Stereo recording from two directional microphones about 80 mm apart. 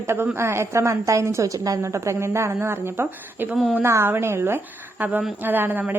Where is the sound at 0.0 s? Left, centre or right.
Right.